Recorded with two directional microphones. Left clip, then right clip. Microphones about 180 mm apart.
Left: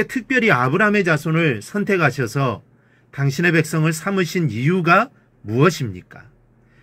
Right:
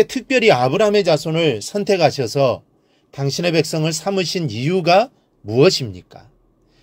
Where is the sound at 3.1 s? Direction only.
25° right (ahead or behind).